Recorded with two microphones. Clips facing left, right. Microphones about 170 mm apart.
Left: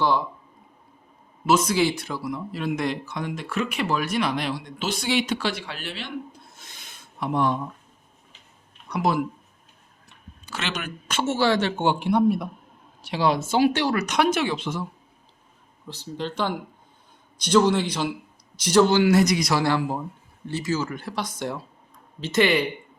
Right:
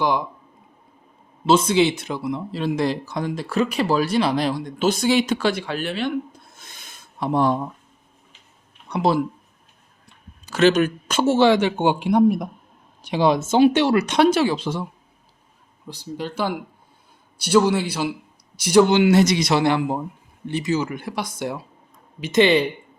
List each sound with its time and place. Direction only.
0.0 s speech: 15° right (ahead or behind)
1.5 s speech: 25° right (ahead or behind); by 6.1 s 50° right (ahead or behind)
6.6 s a sound: 50° right (ahead or behind)
7.2 s speech: 35° right (ahead or behind)
8.9 s speech: 30° right (ahead or behind)
10.4 s speech: 40° right (ahead or behind)
11.4 s speech: 15° right (ahead or behind); by 14.8 s 40° right (ahead or behind)
15.9 s speech: 10° right (ahead or behind)